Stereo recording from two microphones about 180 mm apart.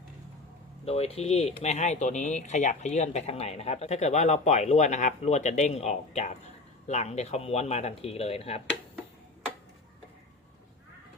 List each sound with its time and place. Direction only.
0.9 s speech: 35° left (ahead or behind)